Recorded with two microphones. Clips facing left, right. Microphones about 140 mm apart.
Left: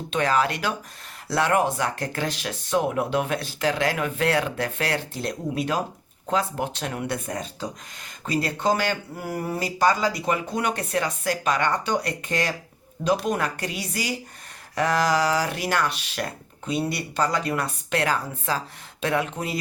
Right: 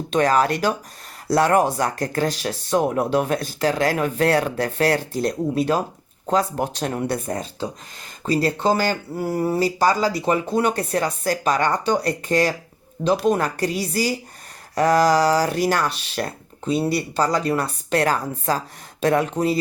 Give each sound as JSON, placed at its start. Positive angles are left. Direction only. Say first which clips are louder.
{"t": 0.1, "sound": "speech", "louder": "right 4 dB", "side_deg": -40}